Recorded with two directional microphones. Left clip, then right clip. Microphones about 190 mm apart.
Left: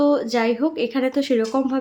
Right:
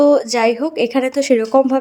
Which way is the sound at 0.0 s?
35° right (ahead or behind).